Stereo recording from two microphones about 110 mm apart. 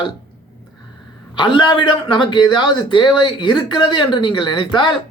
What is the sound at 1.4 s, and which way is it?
A man's voice, 45° left (ahead or behind).